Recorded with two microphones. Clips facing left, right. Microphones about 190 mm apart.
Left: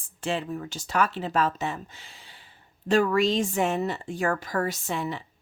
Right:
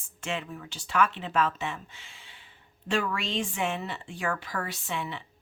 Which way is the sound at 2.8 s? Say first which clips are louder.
Left 8 dB; 40° left (ahead or behind).